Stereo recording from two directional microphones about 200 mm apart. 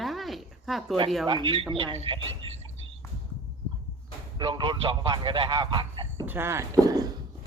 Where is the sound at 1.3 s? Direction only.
25° right (ahead or behind).